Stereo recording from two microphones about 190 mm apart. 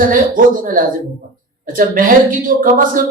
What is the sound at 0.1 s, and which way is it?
A woman's voice, 45° right (ahead or behind).